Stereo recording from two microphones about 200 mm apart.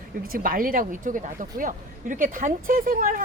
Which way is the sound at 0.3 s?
45° right (ahead or behind).